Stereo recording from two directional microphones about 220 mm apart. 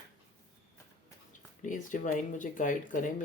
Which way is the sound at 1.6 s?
35° left (ahead or behind).